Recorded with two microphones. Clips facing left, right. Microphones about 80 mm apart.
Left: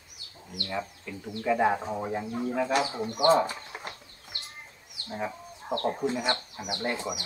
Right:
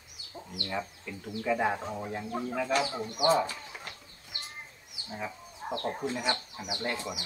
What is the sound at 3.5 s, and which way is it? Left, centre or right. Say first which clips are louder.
Speech: left 3 dB; left.